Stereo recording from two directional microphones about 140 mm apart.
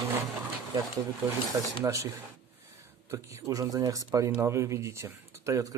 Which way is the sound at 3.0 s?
20° right (ahead or behind).